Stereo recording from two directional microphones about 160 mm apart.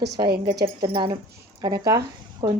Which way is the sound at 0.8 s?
30° right (ahead or behind).